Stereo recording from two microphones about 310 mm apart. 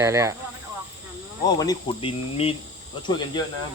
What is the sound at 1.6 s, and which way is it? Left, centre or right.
Speech, centre.